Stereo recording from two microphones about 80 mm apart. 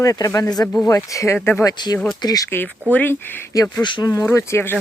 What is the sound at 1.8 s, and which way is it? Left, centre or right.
Speech, left.